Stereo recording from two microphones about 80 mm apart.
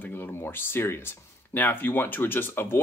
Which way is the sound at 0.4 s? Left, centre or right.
Left.